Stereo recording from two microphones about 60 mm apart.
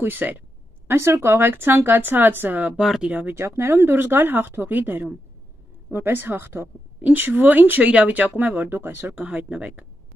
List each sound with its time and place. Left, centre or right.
0.0 s speech: right
0.8 s speech: right
3.3 s speech: right
7.0 s speech: right